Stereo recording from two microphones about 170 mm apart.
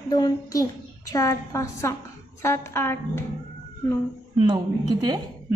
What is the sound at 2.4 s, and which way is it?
Speech, 15° left (ahead or behind).